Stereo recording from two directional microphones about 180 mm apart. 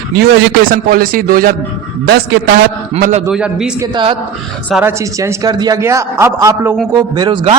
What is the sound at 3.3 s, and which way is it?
Speech, 5° right (ahead or behind).